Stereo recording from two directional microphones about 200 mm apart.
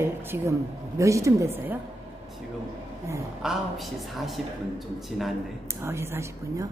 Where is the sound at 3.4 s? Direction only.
Centre (ahead or behind).